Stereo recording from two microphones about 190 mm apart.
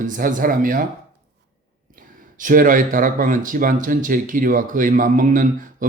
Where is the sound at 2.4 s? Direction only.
45° right (ahead or behind).